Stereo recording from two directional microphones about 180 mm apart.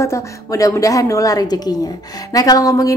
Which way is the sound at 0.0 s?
15° left (ahead or behind).